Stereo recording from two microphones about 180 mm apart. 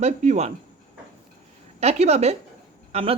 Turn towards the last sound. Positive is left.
turn(degrees=-35)  # may be behind; listen again after turning